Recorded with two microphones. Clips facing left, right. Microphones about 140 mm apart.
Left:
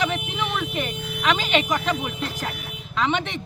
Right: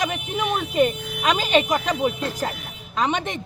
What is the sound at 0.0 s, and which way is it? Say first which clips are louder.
Speech: right 1 dB; 40° right (ahead or behind).